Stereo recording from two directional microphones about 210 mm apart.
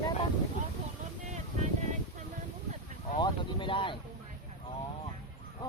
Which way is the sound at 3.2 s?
25° left (ahead or behind).